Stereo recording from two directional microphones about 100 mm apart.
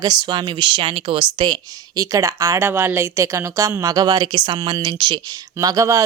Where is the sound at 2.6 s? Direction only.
20° right (ahead or behind).